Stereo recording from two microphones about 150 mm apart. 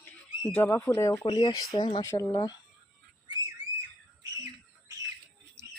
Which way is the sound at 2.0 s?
20° left (ahead or behind).